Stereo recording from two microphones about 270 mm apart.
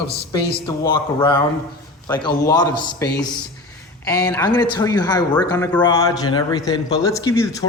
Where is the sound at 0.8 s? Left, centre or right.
Centre.